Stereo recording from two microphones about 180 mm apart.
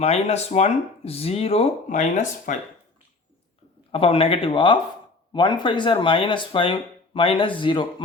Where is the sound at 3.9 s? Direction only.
30° left (ahead or behind).